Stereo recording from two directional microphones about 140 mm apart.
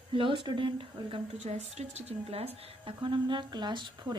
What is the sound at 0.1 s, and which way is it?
A woman's voice, 35° right (ahead or behind).